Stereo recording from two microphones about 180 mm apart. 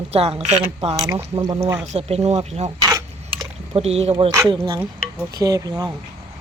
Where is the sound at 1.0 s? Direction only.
20° right (ahead or behind).